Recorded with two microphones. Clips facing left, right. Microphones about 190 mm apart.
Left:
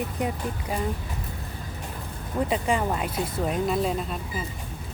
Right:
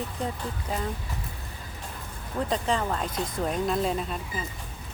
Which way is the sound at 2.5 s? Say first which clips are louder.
Left 1 dB; 10° left (ahead or behind).